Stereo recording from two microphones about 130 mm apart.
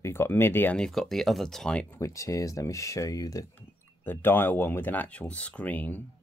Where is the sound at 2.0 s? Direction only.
25° left (ahead or behind).